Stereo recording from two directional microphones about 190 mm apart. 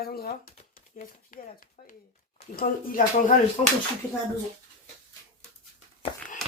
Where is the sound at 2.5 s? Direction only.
45° left (ahead or behind).